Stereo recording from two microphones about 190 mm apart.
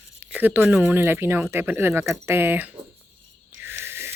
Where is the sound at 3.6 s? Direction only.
10° right (ahead or behind).